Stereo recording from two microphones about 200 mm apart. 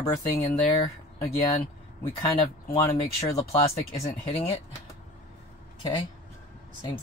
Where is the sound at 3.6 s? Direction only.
30° left (ahead or behind).